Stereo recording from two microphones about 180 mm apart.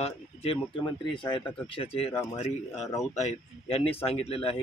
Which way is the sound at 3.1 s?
35° left (ahead or behind).